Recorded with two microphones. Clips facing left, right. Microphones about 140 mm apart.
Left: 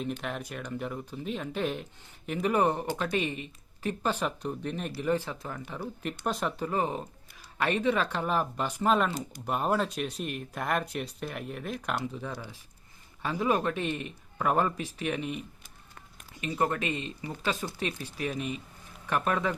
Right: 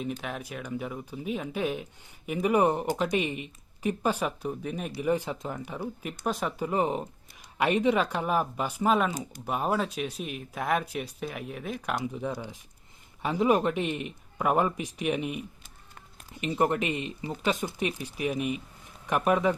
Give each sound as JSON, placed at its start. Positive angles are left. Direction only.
{"t": 0.2, "sound": "speech", "side_deg": 0}
{"t": 6.1, "sound": "speech", "side_deg": 0}
{"t": 6.6, "sound": "speech", "side_deg": -15}
{"t": 12.0, "sound": "speech", "side_deg": -15}